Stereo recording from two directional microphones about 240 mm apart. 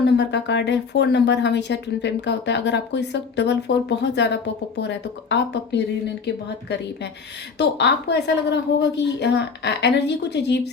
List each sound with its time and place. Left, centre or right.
0.2 s speech: left